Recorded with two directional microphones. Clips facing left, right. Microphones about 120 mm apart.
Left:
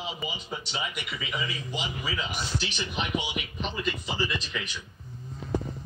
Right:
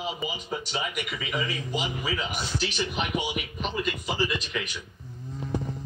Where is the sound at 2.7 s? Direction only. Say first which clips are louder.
Right 2 dB; 45° right (ahead or behind).